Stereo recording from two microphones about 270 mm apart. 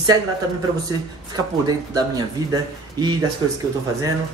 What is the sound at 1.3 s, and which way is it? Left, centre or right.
A woman's voice, centre.